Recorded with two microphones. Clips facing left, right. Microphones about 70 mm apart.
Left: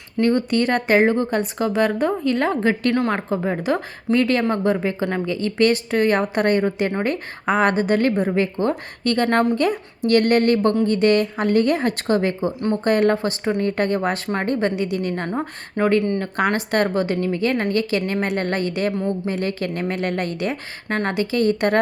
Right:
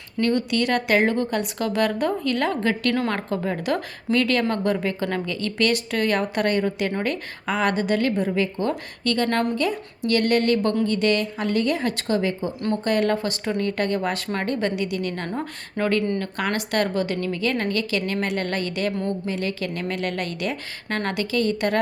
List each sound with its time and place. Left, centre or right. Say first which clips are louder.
0.3 s speech: left 3 dB; left
2.9 s a woman's voice: left 3 dB; centre
3.2 s a woman's voice: left 3 dB; left
16.4 s a woman's voice: left 5 dB; left
18.9 s a woman's voice: left 3 dB; centre
19.3 s a woman's voice: left 3 dB; left